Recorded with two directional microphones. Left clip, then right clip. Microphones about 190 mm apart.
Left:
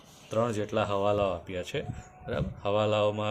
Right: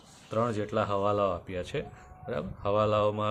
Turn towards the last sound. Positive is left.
turn(degrees=-15)  # may be behind; listen again after turning